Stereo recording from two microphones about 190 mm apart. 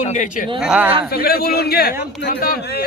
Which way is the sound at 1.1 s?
55° left (ahead or behind).